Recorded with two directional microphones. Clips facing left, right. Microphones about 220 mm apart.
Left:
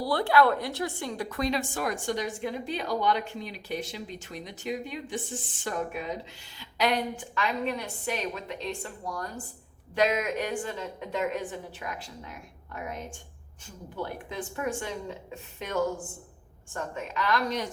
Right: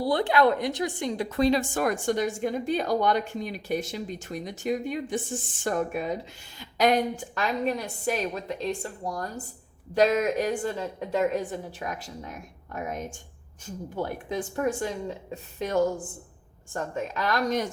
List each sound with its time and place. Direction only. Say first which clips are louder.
0.0 s a woman's voice: right 1 dB; 20° right (ahead or behind)
1.7 s a woman's voice: right 5 dB; 50° right (ahead or behind)